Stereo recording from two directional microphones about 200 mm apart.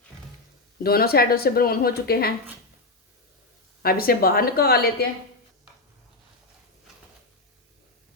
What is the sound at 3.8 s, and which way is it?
Speech, 50° left (ahead or behind).